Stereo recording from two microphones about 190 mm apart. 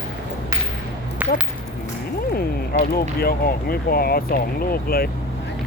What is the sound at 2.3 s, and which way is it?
Speech, 50° left (ahead or behind).